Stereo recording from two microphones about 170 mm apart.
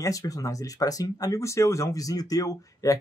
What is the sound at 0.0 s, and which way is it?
Speech, 20° left (ahead or behind).